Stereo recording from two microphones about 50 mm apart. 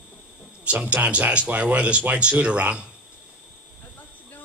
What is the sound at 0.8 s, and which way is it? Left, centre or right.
A man's voice, right.